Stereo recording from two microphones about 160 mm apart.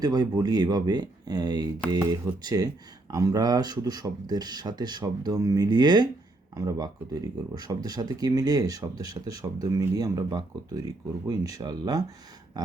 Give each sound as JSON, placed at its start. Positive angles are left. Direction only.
{"t": 0.0, "sound": "speech", "side_deg": -25}